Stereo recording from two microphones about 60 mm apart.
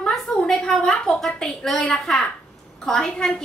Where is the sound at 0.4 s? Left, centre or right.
Centre.